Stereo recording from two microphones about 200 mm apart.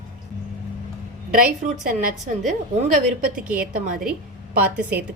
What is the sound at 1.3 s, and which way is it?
Speech, 45° right (ahead or behind).